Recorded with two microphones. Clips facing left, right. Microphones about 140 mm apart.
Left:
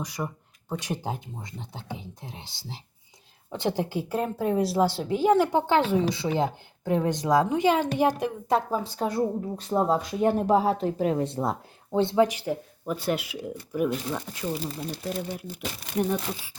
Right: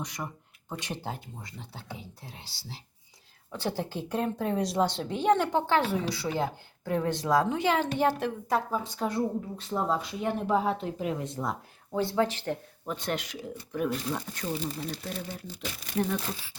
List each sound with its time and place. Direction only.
0.2 s a woman's voice: centre (ahead or behind); by 8.6 s 20° left (ahead or behind)
8.7 s a woman's voice: 35° left (ahead or behind); by 15.5 s 10° left (ahead or behind)